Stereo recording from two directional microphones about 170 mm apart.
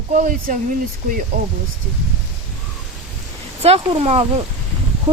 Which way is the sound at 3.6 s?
35° right (ahead or behind).